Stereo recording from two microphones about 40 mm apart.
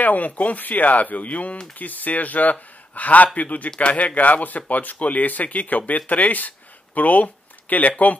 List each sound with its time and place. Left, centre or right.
0.0 s speech: left